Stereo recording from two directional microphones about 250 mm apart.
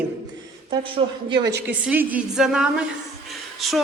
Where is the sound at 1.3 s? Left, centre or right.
Centre.